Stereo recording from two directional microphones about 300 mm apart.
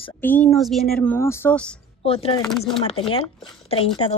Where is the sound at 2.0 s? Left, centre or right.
Centre.